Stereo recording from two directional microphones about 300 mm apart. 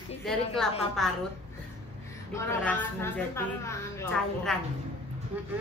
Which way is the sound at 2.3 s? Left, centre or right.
Centre.